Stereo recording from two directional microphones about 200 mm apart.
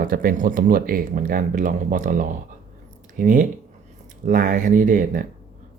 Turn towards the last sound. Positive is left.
turn(degrees=-40)  # may be behind; listen again after turning